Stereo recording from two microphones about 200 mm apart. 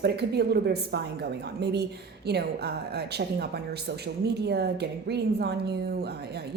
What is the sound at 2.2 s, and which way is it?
A woman's voice, 55° right (ahead or behind).